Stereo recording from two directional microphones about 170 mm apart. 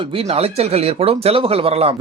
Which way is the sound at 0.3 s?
35° right (ahead or behind).